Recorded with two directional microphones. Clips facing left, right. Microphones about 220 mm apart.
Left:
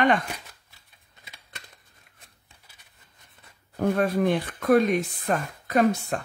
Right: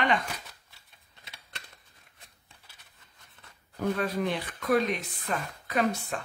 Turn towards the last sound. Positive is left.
turn(degrees=45)  # may be behind; listen again after turning